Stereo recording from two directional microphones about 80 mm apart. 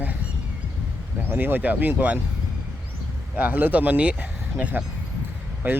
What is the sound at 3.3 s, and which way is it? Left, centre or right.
Speech, right.